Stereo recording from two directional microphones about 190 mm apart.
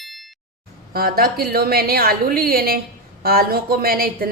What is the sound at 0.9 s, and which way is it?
A woman's voice, 50° right (ahead or behind).